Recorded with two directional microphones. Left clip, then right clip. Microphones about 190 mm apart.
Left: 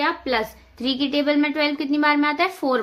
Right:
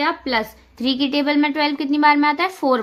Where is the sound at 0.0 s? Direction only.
20° right (ahead or behind).